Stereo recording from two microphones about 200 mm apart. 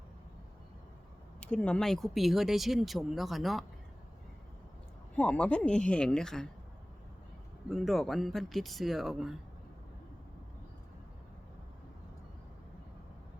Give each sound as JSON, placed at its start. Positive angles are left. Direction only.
{"t": 1.4, "sound": "speech", "side_deg": 5}
{"t": 5.1, "sound": "speech", "side_deg": 5}
{"t": 7.7, "sound": "speech", "side_deg": 0}